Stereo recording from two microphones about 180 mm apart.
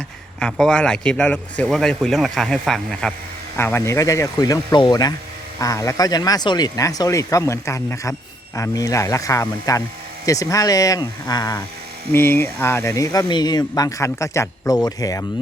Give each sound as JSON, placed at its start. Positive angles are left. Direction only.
{"t": 0.3, "sound": "a man's voice", "side_deg": 5}